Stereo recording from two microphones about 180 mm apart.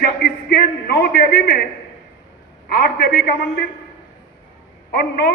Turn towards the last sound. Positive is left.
turn(degrees=60)  # may be behind; listen again after turning